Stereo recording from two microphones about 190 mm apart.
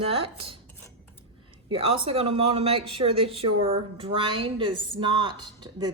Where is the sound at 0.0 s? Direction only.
30° right (ahead or behind).